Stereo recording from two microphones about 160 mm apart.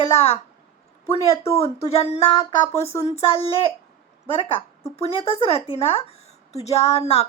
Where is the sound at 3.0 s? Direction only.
40° left (ahead or behind).